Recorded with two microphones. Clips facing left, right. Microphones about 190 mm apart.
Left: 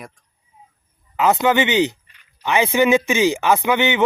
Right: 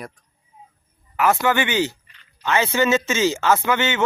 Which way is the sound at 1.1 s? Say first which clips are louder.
Left 3 dB; 20° left (ahead or behind).